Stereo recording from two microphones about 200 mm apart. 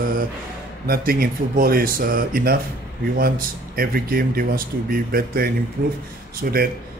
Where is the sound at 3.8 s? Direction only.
45° right (ahead or behind).